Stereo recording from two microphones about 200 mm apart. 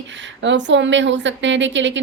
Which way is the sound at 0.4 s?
65° right (ahead or behind).